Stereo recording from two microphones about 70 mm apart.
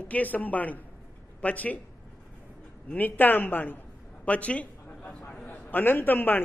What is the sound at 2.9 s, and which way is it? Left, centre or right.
Speech, left.